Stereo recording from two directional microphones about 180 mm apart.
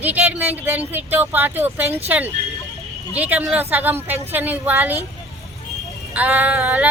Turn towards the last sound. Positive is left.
turn(degrees=-10)  # may be behind; listen again after turning